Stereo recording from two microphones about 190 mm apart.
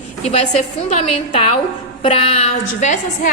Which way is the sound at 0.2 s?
35° left (ahead or behind).